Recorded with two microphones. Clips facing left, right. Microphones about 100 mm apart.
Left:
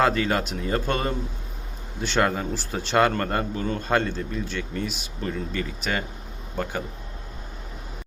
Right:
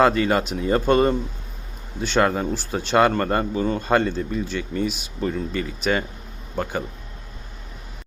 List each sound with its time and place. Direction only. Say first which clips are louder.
0.0 s speech: right 4 dB; 5° right (ahead or behind)